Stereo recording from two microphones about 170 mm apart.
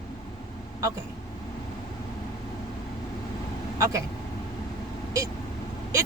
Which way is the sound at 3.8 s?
20° right (ahead or behind).